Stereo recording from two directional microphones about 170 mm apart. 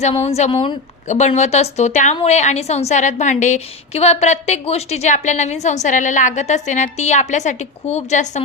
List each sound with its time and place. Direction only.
0.0 s a woman's voice: 40° left (ahead or behind)
1.0 s a woman's voice: 45° left (ahead or behind)